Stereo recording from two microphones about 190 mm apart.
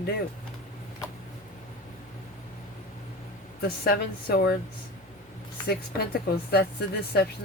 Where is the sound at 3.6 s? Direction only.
55° left (ahead or behind).